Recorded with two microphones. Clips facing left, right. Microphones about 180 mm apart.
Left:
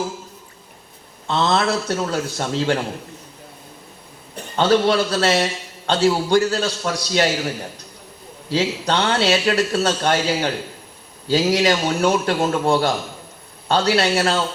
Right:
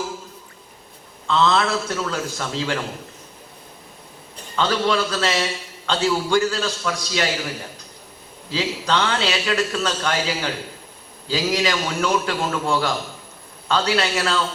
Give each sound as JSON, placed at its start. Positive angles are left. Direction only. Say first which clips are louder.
{"t": 1.3, "sound": "a man's voice", "louder": "even", "side_deg": 40}
{"t": 4.6, "sound": "a man's voice", "louder": "left 5 dB", "side_deg": 40}
{"t": 8.5, "sound": "a man's voice", "louder": "left 2 dB", "side_deg": 40}